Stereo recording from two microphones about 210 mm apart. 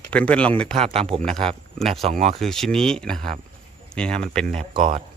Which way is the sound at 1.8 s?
30° right (ahead or behind).